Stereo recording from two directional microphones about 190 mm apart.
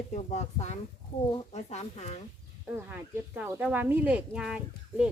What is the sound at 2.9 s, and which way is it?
Speech, 10° right (ahead or behind).